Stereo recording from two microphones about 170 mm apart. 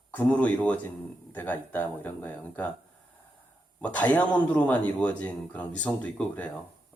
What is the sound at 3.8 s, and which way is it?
A man's voice, 10° left (ahead or behind).